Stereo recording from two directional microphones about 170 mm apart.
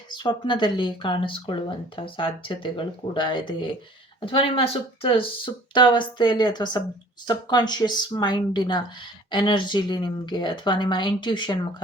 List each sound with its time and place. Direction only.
0.1 s speech: 30° left (ahead or behind)